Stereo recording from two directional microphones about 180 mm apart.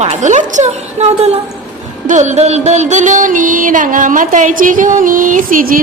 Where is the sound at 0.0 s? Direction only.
40° right (ahead or behind).